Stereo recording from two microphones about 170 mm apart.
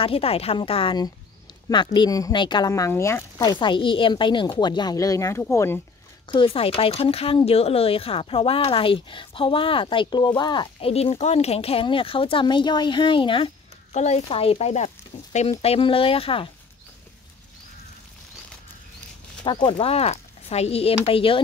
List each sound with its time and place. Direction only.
0.0 s speech: 35° left (ahead or behind); by 5.8 s 15° left (ahead or behind)
6.2 s speech: 30° left (ahead or behind)
13.9 s speech: 40° left (ahead or behind)
19.4 s speech: 25° left (ahead or behind)